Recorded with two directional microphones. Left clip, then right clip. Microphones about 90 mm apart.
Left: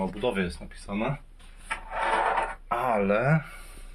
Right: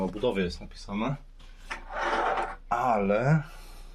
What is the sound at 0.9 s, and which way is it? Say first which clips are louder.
Speech: left 2 dB; 15° left (ahead or behind).